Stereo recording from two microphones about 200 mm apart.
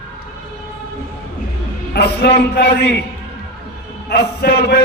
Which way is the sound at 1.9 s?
55° left (ahead or behind).